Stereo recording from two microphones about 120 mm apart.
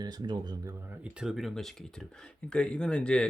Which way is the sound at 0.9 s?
10° right (ahead or behind).